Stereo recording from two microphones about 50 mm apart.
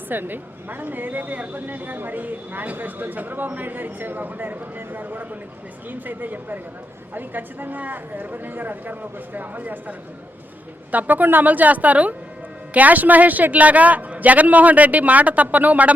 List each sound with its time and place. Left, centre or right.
0.1 s speech: right
10.9 s speech: right